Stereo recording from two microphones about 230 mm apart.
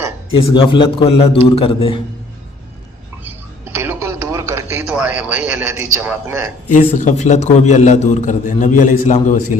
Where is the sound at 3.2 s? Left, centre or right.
Centre.